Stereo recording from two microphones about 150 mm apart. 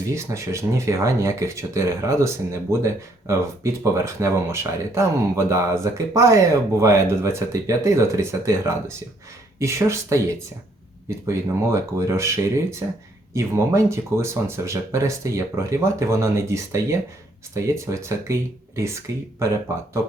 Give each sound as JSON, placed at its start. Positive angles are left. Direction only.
{"t": 0.1, "sound": "speech", "side_deg": -20}
{"t": 11.3, "sound": "speech", "side_deg": -20}